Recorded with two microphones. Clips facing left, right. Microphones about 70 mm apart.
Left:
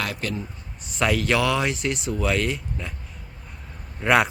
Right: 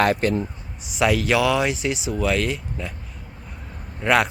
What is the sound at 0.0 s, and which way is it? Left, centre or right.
Speech, right.